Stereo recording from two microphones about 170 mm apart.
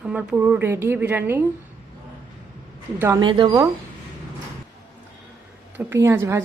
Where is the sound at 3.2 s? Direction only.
25° right (ahead or behind).